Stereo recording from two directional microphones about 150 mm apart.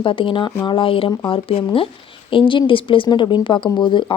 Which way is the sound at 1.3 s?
40° left (ahead or behind).